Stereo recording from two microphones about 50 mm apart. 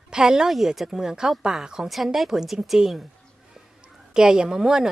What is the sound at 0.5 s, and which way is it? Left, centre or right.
Speech, centre.